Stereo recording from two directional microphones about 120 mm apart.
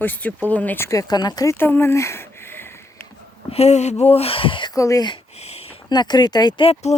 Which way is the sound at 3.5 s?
65° left (ahead or behind).